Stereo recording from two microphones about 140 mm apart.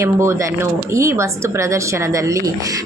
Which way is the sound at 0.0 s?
20° right (ahead or behind).